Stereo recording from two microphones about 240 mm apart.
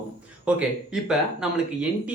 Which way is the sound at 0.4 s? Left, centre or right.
Centre.